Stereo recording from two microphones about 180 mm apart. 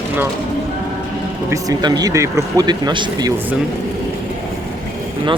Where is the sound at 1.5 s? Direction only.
20° right (ahead or behind).